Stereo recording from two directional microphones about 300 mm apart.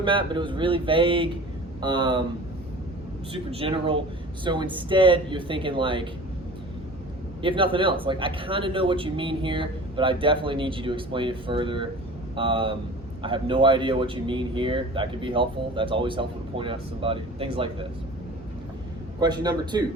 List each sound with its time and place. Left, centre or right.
0.0 s a man's voice: centre
3.3 s a man's voice: centre
7.4 s a man's voice: centre
19.2 s a man's voice: centre